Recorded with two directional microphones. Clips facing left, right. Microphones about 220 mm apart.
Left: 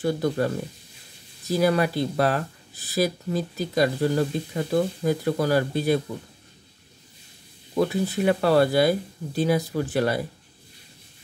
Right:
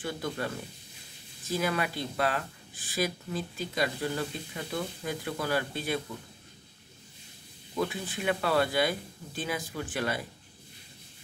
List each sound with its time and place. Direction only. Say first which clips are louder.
0.0 s speech: left 10 dB; 40° left (ahead or behind)
1.5 s speech: left 9 dB; 40° left (ahead or behind)
7.7 s speech: left 9 dB; 40° left (ahead or behind)